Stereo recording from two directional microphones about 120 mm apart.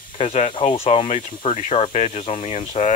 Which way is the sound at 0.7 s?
50° left (ahead or behind).